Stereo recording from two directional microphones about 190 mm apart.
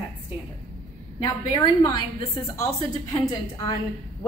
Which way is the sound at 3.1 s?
25° left (ahead or behind).